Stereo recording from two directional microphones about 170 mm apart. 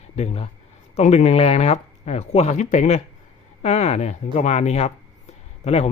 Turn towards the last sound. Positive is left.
turn(degrees=40)  # may be behind; listen again after turning